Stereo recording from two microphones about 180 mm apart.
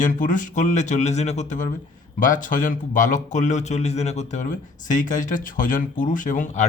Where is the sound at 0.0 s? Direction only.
45° left (ahead or behind).